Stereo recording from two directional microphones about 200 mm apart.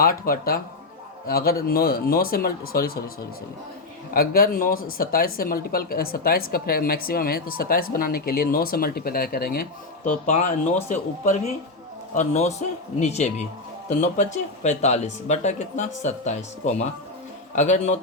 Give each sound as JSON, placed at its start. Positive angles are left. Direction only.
{"t": 0.0, "sound": "speech", "side_deg": 45}
{"t": 4.1, "sound": "speech", "side_deg": 45}
{"t": 10.1, "sound": "speech", "side_deg": 35}